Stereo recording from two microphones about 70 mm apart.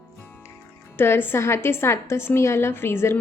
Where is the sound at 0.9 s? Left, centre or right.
Left.